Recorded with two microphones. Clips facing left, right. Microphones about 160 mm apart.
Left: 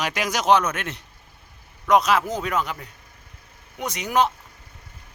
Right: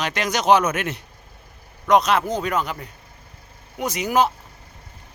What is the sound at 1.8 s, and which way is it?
Speech, 5° left (ahead or behind).